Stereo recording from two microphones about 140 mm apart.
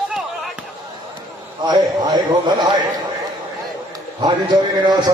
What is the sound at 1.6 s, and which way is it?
A man's voice, 30° right (ahead or behind).